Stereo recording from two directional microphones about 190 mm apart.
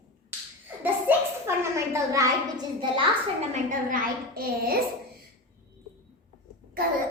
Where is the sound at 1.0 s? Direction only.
15° right (ahead or behind).